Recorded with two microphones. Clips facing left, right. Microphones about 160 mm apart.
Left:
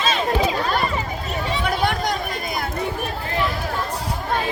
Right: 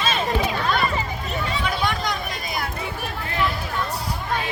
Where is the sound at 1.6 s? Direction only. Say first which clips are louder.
Left 4 dB; 55° left (ahead or behind).